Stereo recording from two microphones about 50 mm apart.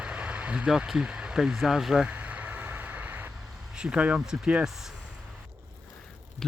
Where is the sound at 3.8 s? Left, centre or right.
Right.